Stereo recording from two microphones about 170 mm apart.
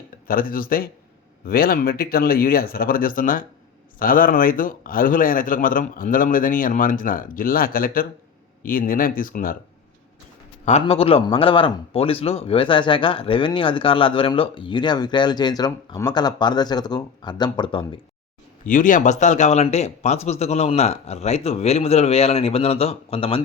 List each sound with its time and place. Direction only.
0.3 s a man's voice: 55° left (ahead or behind)
10.7 s a man's voice: 40° left (ahead or behind)
18.6 s speech: 50° left (ahead or behind); by 23.4 s 35° left (ahead or behind)